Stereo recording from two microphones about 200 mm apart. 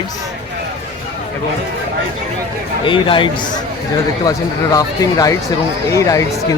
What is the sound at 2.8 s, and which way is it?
Speech, 25° left (ahead or behind).